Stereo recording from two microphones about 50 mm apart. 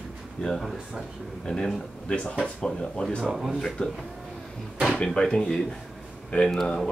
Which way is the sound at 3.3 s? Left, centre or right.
Centre.